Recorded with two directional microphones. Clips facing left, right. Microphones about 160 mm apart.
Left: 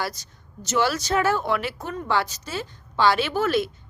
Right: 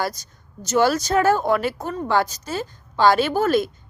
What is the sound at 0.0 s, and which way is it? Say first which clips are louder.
A woman's voice: right 4 dB; 40° right (ahead or behind).